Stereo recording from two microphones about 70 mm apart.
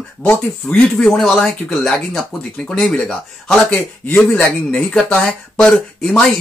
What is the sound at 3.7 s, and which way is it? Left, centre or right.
Speech, left.